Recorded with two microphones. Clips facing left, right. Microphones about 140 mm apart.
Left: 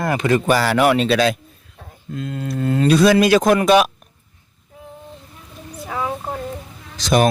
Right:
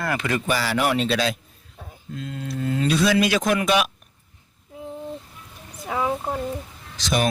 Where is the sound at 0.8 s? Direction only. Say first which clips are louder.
Left 5 dB; 80° left; by 3.9 s 40° left (ahead or behind).